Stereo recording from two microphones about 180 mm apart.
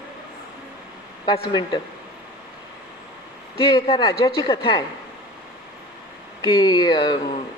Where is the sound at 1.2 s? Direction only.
25° left (ahead or behind).